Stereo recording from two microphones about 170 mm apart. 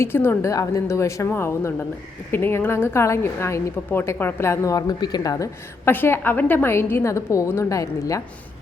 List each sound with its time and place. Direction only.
0.0 s a woman's voice: 15° left (ahead or behind)